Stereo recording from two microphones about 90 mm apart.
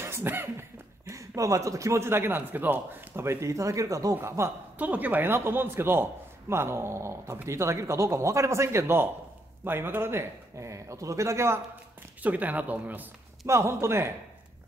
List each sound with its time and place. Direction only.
0.0 s speech: 25° right (ahead or behind)
1.0 s speech: 40° right (ahead or behind)
4.7 s speech: 20° right (ahead or behind)
12.2 s speech: 15° right (ahead or behind)
13.5 s speech: 30° right (ahead or behind)